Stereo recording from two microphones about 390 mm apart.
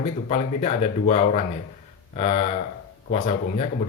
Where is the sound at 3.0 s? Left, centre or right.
Centre.